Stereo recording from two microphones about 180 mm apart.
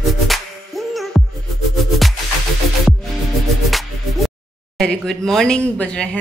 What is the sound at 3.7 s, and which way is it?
Music, centre (ahead or behind).